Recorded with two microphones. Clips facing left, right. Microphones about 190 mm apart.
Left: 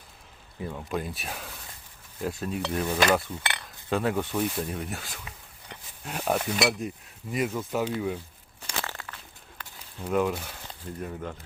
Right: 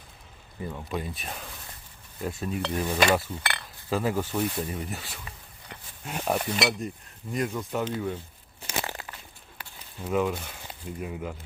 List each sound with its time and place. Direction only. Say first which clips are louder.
0.6 s speech: left 1 dB; centre (ahead or behind)
8.7 s a sound: right 2 dB; 20° right (ahead or behind)
10.1 s speech: left 1 dB; centre (ahead or behind)